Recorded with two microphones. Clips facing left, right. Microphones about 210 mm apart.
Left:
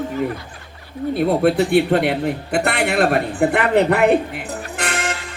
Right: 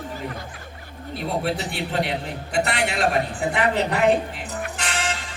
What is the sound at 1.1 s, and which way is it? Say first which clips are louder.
A woman's voice: left 10 dB; 60° left (ahead or behind).